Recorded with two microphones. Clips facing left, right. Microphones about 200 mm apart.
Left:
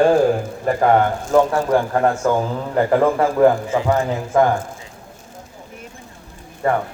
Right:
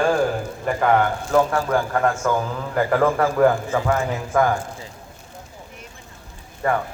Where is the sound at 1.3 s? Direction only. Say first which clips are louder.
Left 4 dB; 20° left (ahead or behind).